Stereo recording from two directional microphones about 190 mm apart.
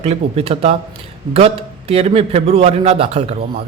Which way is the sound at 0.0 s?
35° right (ahead or behind).